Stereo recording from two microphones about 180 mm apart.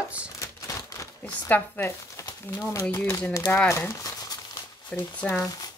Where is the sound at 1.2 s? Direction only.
10° left (ahead or behind).